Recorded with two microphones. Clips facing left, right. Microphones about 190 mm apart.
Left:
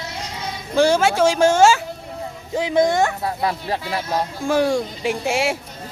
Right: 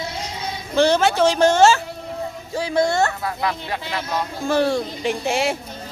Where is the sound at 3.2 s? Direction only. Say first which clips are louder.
Left 2 dB; 30° left (ahead or behind).